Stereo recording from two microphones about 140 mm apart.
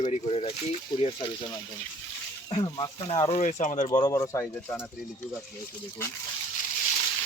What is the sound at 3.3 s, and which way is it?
Speech, 60° left (ahead or behind).